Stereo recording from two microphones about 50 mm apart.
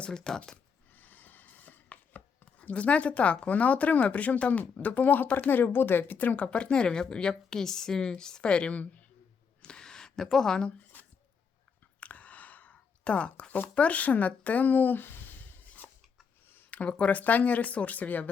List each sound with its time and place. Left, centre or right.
0.0 s speech: centre
0.5 s chopping: left
2.4 s speech: left
9.6 s a sound: centre
11.9 s a sound: left
13.7 s speech: left